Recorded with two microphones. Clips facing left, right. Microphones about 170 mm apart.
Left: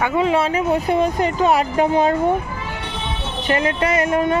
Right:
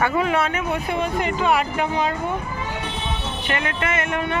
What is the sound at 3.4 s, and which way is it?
Speech, 35° left (ahead or behind).